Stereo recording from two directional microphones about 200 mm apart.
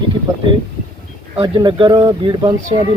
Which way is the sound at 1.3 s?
25° right (ahead or behind).